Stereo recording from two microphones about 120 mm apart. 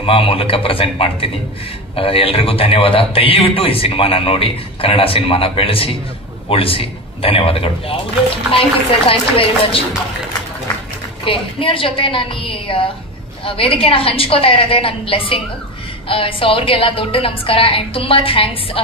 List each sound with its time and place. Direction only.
0.0 s a man's voice: 50° left (ahead or behind)
11.2 s a man's voice: 50° left (ahead or behind)